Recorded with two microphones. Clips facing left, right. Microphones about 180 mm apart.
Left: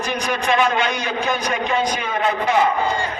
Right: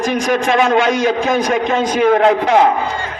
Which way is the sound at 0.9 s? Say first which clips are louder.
Right 8 dB; 90° right.